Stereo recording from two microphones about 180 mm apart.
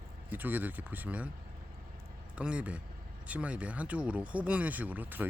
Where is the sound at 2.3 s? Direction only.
5° right (ahead or behind).